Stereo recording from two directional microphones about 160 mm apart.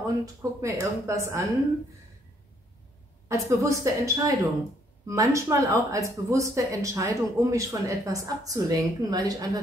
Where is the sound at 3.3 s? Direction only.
20° right (ahead or behind).